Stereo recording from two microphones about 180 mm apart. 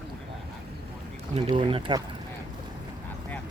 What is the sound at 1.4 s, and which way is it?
Speech, 25° right (ahead or behind).